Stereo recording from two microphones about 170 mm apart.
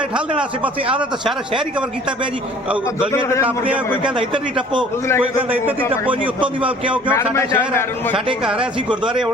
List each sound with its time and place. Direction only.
4.0 s a man's voice: 30° right (ahead or behind)
6.1 s a man's voice: 10° right (ahead or behind)
7.1 s a man's voice: 15° left (ahead or behind)
8.9 s a man's voice: 5° right (ahead or behind)